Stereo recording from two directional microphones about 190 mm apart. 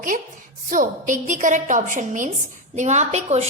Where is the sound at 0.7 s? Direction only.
45° right (ahead or behind).